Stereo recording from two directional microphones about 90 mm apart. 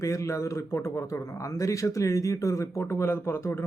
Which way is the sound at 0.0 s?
35° left (ahead or behind).